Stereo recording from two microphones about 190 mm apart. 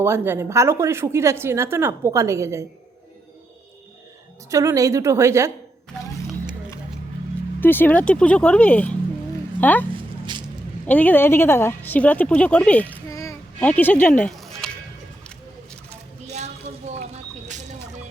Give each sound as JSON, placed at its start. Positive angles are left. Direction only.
{"t": 0.0, "sound": "a woman's voice", "side_deg": -15}
{"t": 4.4, "sound": "a woman's voice", "side_deg": -15}
{"t": 7.6, "sound": "speech", "side_deg": 10}
{"t": 9.9, "sound": "a sound", "side_deg": -25}
{"t": 10.8, "sound": "a woman's voice", "side_deg": 10}
{"t": 16.2, "sound": "a sound", "side_deg": -35}